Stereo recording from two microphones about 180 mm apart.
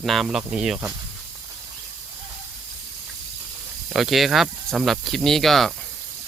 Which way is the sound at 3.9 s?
Centre (ahead or behind).